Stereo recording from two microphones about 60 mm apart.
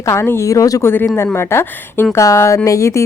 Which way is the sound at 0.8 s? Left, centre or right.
Left.